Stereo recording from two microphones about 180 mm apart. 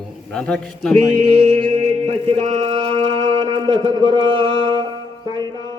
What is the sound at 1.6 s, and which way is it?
Music, 30° right (ahead or behind).